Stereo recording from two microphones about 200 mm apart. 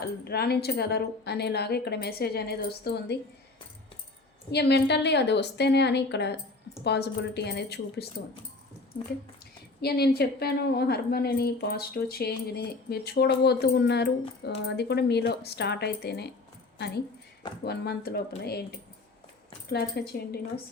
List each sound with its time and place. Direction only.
0.3 s a woman's voice: 55° left (ahead or behind)
4.5 s speech: 55° left (ahead or behind)
9.8 s a woman's voice: 50° left (ahead or behind)
20.0 s a woman's voice: 50° left (ahead or behind)